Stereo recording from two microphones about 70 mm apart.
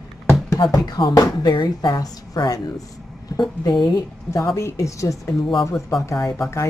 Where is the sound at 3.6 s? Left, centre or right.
Left.